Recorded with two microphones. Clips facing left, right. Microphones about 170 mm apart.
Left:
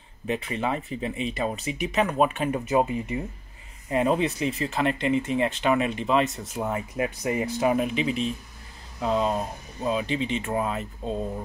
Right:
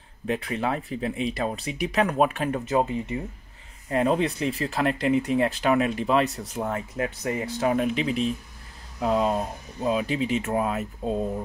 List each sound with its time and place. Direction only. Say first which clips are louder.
0.3 s speech: right 1 dB; centre (ahead or behind)
2.7 s speech: left 1 dB; 15° left (ahead or behind)
3.9 s speech: even; 5° left (ahead or behind)
7.0 s speech: left 3 dB; 15° left (ahead or behind)
7.7 s speech: right 1 dB; centre (ahead or behind)